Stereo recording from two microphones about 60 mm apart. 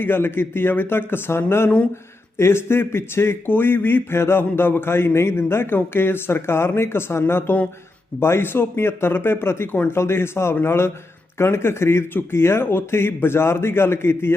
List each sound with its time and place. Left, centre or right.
0.0 s speech: left